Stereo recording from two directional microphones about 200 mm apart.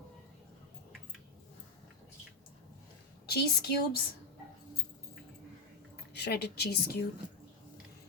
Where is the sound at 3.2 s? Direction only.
55° left (ahead or behind).